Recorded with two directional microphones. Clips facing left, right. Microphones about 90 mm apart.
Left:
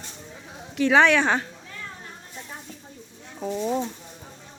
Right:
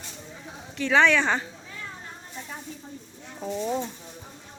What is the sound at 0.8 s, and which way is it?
Speech, 10° left (ahead or behind).